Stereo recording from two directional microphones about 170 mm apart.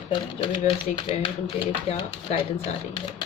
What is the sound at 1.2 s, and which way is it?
Speech, 30° left (ahead or behind).